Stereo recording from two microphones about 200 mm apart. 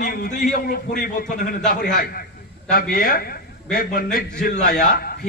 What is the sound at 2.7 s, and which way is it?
A man's voice, 45° left (ahead or behind).